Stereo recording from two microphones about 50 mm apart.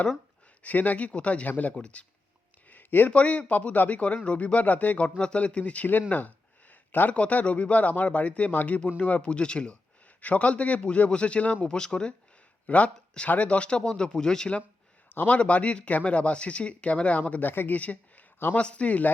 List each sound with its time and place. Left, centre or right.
0.6 s speech: left
2.6 s a sound: left
3.1 s speech: left
5.2 s speech: left
5.9 s a sound: left
7.1 s speech: left
12.6 s speech: left; by 14.5 s centre
15.3 s speech: left
17.4 s speech: left
17.7 s speech: left